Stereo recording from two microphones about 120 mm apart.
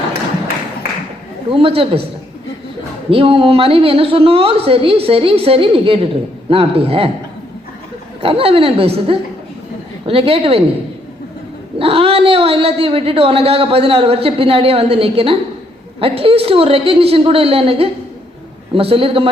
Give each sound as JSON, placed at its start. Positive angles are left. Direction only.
{"t": 1.5, "sound": "speech", "side_deg": -50}
{"t": 3.1, "sound": "speech", "side_deg": -50}
{"t": 8.2, "sound": "speech", "side_deg": -50}
{"t": 11.8, "sound": "speech", "side_deg": -50}